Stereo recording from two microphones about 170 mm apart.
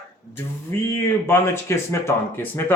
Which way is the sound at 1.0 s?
15° left (ahead or behind).